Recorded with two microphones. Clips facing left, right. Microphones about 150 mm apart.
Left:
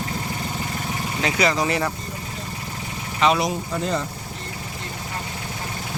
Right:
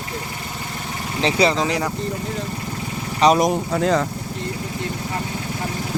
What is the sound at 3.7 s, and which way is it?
Speech, 90° right.